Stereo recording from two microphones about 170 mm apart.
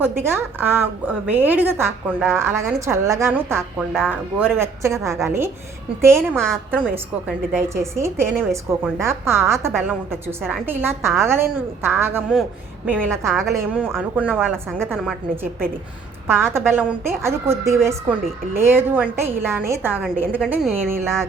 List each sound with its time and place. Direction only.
0.0 s a woman's voice: 15° right (ahead or behind)
3.8 s a woman's voice: centre (ahead or behind)
4.1 s a woman's voice: 10° right (ahead or behind)
6.3 s a woman's voice: 5° left (ahead or behind)
6.7 s a woman's voice: 10° right (ahead or behind)
16.2 s a woman's voice: 15° right (ahead or behind)